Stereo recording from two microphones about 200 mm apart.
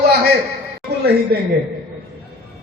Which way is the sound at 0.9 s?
55° right (ahead or behind).